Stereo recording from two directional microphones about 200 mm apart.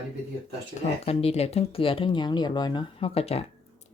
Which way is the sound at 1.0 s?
30° left (ahead or behind).